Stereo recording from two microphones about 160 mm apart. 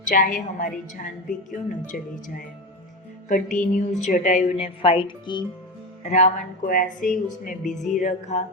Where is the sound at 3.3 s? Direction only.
55° left (ahead or behind); by 5.4 s 30° left (ahead or behind).